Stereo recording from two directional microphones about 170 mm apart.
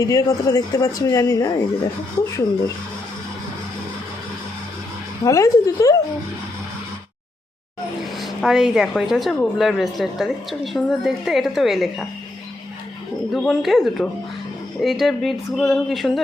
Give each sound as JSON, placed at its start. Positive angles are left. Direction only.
{"t": 0.0, "sound": "speech", "side_deg": 20}
{"t": 5.2, "sound": "speech", "side_deg": 20}
{"t": 8.2, "sound": "a woman's voice", "side_deg": 0}
{"t": 13.3, "sound": "a woman's voice", "side_deg": 0}